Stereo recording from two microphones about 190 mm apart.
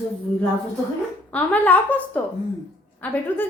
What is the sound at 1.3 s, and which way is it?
A woman's voice, 10° left (ahead or behind).